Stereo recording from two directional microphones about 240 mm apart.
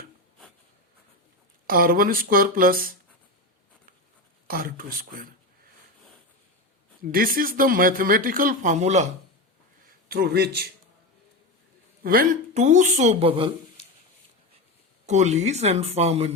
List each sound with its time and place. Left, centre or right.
1.6 s speech: right
4.4 s speech: right
7.0 s speech: right
10.1 s speech: right
12.0 s a woman's voice: right
15.0 s a woman's voice: right